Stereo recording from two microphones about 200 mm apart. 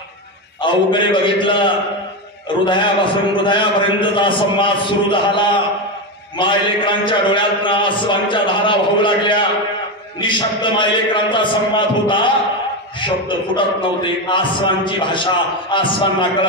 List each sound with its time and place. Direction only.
0.6 s a man's voice: 25° left (ahead or behind)